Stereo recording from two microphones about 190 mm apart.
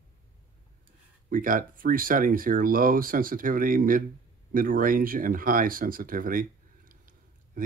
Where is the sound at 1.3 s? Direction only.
45° right (ahead or behind).